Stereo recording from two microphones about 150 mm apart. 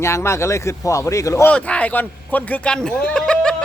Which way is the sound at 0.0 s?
20° left (ahead or behind).